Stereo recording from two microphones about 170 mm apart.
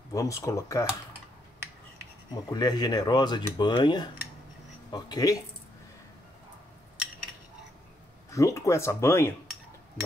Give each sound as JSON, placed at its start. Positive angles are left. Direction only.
{"t": 0.1, "sound": "speech", "side_deg": 20}
{"t": 2.3, "sound": "speech", "side_deg": 25}
{"t": 8.3, "sound": "speech", "side_deg": 20}